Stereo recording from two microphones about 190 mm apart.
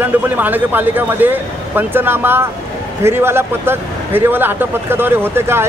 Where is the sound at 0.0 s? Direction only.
10° right (ahead or behind).